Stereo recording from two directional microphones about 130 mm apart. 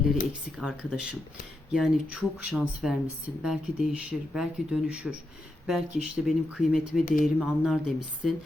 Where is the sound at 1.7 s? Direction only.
5° right (ahead or behind).